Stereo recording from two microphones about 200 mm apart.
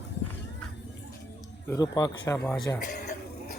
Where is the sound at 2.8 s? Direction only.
55° left (ahead or behind).